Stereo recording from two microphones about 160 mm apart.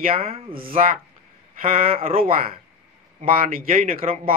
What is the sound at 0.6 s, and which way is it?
Speech, 65° right (ahead or behind).